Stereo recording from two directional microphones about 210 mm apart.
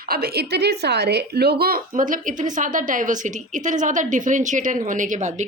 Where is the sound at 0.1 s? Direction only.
50° right (ahead or behind).